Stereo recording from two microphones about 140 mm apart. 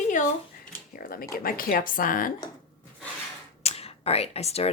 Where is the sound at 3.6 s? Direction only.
45° left (ahead or behind).